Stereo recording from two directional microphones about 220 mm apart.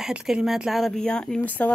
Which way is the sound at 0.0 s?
Centre (ahead or behind).